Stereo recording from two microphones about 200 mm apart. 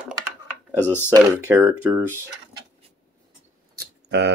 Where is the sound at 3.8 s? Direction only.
60° right (ahead or behind).